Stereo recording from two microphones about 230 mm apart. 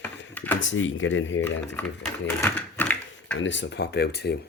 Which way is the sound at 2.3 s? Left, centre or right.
Centre.